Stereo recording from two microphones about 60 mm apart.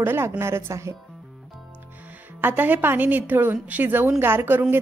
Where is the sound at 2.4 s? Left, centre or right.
Right.